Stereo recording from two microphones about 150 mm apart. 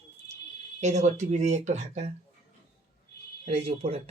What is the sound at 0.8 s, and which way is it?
Speech, 50° right (ahead or behind).